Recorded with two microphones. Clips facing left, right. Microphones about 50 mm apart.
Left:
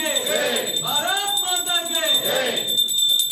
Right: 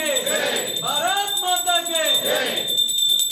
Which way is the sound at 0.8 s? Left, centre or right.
Centre.